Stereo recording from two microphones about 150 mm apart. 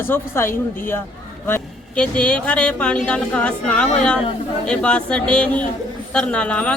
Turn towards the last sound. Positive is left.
turn(degrees=10)  # may be behind; listen again after turning